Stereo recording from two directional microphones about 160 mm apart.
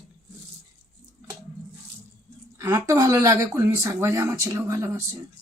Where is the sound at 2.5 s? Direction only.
15° right (ahead or behind).